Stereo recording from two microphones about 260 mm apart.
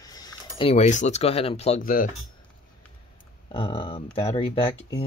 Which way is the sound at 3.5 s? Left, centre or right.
Centre.